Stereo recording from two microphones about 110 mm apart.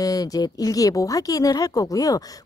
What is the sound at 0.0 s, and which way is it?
Speech, 35° left (ahead or behind).